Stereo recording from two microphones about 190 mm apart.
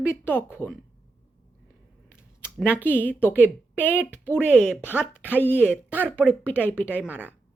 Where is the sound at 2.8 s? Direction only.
10° right (ahead or behind).